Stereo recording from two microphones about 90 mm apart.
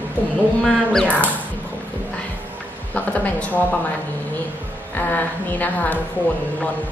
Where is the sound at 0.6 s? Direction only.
5° left (ahead or behind).